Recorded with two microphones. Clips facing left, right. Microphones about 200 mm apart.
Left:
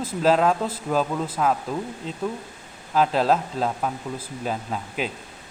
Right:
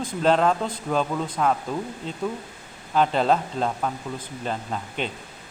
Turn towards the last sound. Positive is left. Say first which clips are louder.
# left 1 dB
turn(degrees=5)  # may be behind; listen again after turning